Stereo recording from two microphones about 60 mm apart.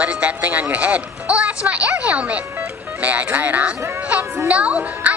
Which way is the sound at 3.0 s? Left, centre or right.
Right.